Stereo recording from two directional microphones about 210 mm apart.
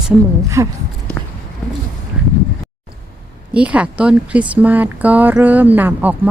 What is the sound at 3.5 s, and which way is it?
Speech, 5° right (ahead or behind).